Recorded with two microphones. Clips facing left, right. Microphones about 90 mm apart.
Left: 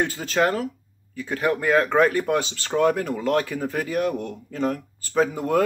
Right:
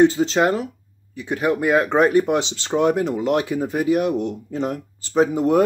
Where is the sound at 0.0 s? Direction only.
25° right (ahead or behind).